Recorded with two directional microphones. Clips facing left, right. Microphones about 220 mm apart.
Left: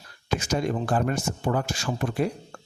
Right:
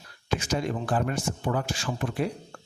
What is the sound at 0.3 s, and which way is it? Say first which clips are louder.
Speech: left 3 dB; 45° left (ahead or behind).